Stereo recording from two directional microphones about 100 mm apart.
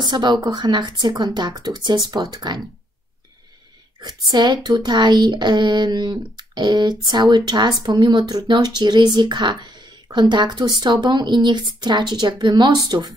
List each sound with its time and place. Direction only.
0.0 s speech: 45° right (ahead or behind)
4.0 s speech: 45° right (ahead or behind)